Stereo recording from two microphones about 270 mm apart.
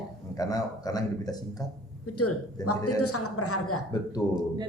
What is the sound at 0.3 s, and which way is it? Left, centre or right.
Speech, centre.